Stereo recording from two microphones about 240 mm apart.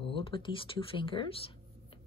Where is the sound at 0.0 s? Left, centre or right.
Left.